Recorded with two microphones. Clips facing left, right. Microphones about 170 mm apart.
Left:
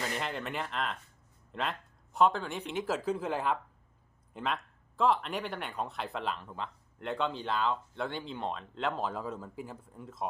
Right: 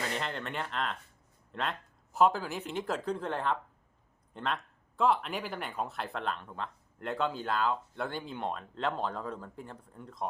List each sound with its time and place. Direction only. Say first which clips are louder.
0.2 s speech: even; 5° left (ahead or behind)